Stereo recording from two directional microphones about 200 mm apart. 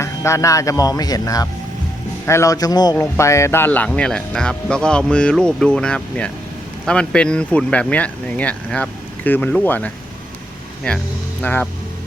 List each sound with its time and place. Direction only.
0.0 s speech: 15° left (ahead or behind)